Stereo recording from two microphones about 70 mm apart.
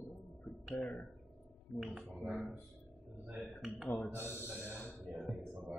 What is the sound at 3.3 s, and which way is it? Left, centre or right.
Speech, centre.